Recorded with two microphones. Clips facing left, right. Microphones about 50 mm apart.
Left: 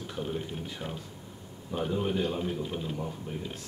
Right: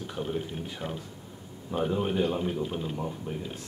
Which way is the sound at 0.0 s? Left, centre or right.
Centre.